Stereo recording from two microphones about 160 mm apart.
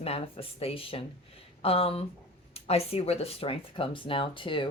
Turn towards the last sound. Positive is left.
turn(degrees=30)  # may be behind; listen again after turning